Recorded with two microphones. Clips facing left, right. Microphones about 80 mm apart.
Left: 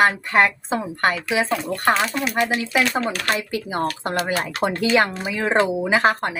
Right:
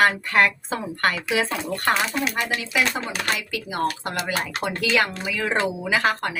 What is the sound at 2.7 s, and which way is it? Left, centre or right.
Speech, left.